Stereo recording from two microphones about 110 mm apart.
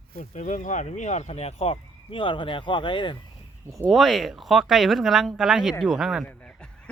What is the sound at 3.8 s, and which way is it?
Speech, centre (ahead or behind).